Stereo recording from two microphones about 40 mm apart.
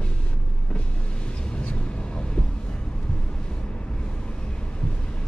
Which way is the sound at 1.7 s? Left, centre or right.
Left.